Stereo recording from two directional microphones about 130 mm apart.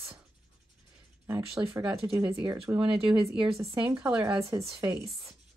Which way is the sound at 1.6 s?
20° right (ahead or behind).